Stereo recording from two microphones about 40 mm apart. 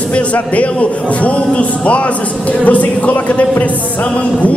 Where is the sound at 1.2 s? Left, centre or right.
Left.